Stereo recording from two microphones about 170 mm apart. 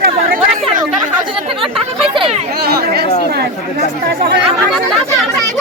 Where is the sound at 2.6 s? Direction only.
65° right (ahead or behind).